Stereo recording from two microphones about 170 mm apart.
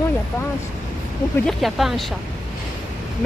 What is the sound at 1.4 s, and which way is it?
Speech, centre (ahead or behind).